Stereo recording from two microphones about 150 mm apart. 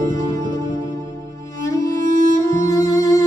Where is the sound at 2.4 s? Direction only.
20° left (ahead or behind).